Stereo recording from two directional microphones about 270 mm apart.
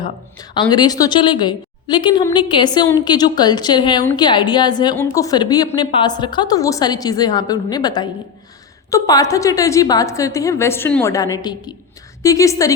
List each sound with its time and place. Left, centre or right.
0.7 s a woman's voice: centre